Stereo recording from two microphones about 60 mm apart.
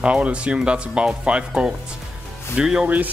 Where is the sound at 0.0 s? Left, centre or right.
Centre.